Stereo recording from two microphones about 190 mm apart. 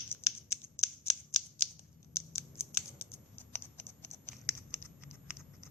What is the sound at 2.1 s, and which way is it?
Scissors, 15° left (ahead or behind).